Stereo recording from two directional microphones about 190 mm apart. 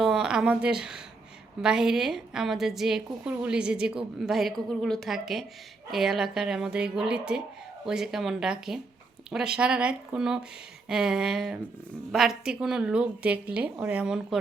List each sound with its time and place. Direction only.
0.0 s a woman's voice: centre (ahead or behind)